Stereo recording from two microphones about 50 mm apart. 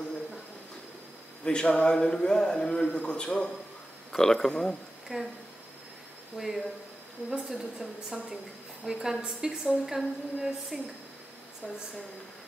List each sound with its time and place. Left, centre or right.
1.4 s a man's voice: centre
5.1 s a woman's voice: centre
6.3 s a woman's voice: centre